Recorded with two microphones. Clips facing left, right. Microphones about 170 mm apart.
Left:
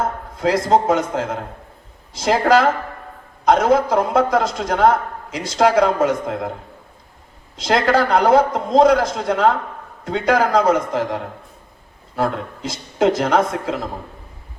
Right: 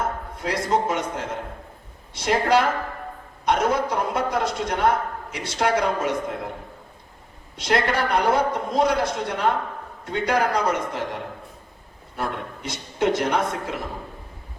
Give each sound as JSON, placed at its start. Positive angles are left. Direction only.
{"t": 0.4, "sound": "a man's voice", "side_deg": 90}
{"t": 7.5, "sound": "a man's voice", "side_deg": 90}